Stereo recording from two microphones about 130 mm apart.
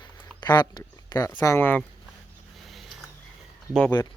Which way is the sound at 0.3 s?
35° left (ahead or behind).